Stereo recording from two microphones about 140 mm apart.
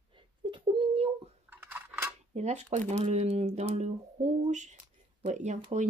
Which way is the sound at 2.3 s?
55° right (ahead or behind).